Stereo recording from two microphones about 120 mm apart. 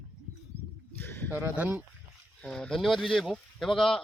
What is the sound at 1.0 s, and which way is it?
Speech, 15° left (ahead or behind).